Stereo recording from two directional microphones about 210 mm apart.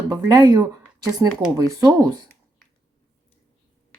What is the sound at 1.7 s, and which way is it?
Speech, 15° right (ahead or behind).